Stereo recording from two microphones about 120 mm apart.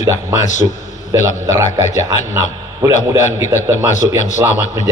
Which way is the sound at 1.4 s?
25° right (ahead or behind).